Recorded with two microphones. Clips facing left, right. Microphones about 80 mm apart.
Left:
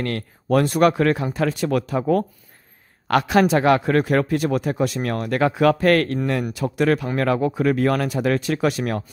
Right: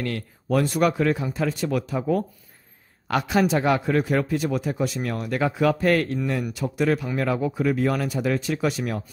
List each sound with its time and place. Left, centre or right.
0.0 s a man's voice: left